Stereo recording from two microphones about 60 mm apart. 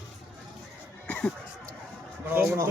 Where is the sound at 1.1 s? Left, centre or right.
Centre.